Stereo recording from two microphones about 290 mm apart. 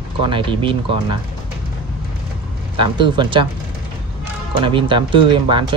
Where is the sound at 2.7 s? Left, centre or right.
Centre.